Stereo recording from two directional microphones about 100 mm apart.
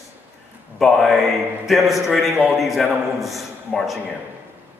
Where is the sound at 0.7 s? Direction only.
Centre (ahead or behind).